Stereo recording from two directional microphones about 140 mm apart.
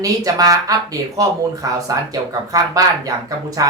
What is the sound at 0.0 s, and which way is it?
Speech, 25° right (ahead or behind).